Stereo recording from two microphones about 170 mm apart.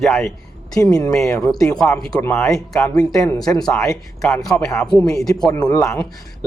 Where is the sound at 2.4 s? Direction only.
Centre (ahead or behind).